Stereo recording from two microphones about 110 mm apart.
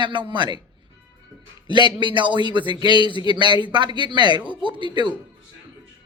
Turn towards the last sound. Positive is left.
turn(degrees=-45)  # may be behind; listen again after turning